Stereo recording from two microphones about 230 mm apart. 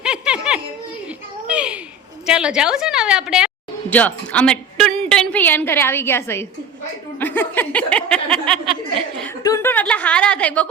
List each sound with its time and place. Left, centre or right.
0.0 s giggle: centre
1.5 s a sound: centre
2.2 s a woman's voice: centre